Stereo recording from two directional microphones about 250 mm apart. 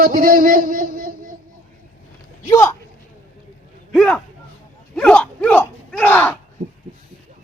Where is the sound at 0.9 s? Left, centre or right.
Right.